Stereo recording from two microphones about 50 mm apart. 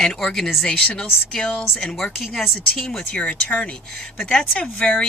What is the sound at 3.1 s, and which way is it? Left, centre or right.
A woman's voice, left.